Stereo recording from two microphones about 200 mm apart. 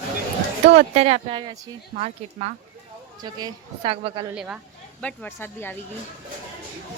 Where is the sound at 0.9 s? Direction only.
30° right (ahead or behind).